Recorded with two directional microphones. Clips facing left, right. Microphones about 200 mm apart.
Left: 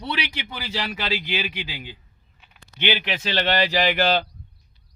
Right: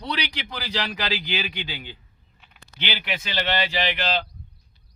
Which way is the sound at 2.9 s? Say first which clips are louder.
Left 6 dB; 25° left (ahead or behind).